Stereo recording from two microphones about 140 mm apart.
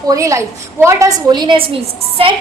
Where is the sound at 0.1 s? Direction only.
20° right (ahead or behind).